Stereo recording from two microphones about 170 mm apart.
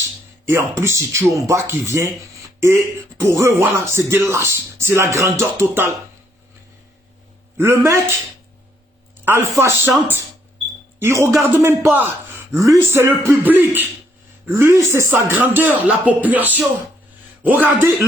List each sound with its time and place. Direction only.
0.8 s speech: 15° right (ahead or behind)
7.5 s a man's voice: 15° right (ahead or behind)
9.2 s speech: 15° right (ahead or behind)
11.0 s speech: 15° right (ahead or behind)